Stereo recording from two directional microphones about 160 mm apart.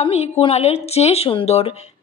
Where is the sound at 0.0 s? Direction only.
40° left (ahead or behind).